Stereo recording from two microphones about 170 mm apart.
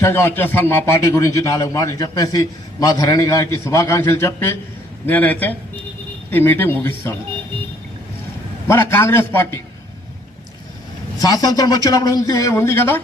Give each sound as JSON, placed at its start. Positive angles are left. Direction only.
{"t": 0.0, "sound": "a man's voice", "side_deg": 15}
{"t": 8.6, "sound": "a man's voice", "side_deg": 15}
{"t": 11.2, "sound": "a man's voice", "side_deg": 20}